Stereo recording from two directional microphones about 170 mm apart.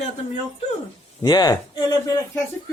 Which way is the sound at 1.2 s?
25° left (ahead or behind).